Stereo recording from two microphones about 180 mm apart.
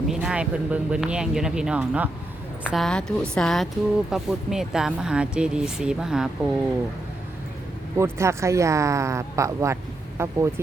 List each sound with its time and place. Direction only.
0.1 s speech: 5° right (ahead or behind)
7.9 s speech: 15° right (ahead or behind)